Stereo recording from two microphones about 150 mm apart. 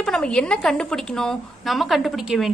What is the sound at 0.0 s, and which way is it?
A woman's voice, 5° left (ahead or behind).